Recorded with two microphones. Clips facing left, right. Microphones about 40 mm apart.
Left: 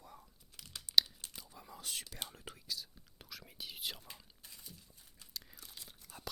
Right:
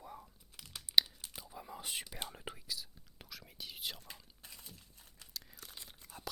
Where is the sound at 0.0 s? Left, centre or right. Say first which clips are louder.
Right 6 dB; centre.